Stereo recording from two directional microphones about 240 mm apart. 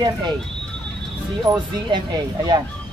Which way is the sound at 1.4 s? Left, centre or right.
Centre.